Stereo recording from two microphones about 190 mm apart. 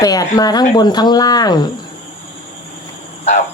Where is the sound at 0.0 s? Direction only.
20° left (ahead or behind).